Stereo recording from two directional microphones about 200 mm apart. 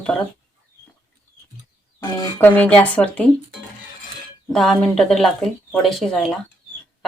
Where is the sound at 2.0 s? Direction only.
20° left (ahead or behind).